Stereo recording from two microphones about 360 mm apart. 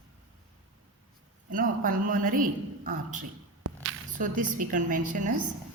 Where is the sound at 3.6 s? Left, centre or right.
Right.